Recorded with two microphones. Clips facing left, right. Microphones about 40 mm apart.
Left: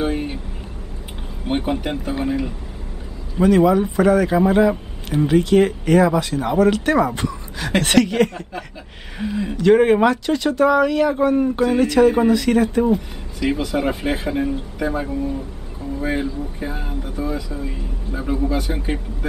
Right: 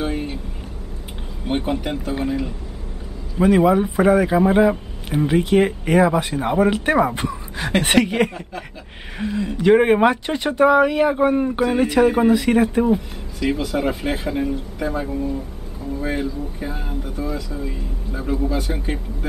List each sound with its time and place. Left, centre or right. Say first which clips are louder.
0.0 s vehicle: left 2 dB; centre
1.5 s speech: left 1 dB; centre
3.3 s speech: left 1 dB; centre
9.2 s speech: even; centre
9.6 s speech: left 1 dB; centre
10.2 s speech: even; right
13.4 s speech: left 1 dB; centre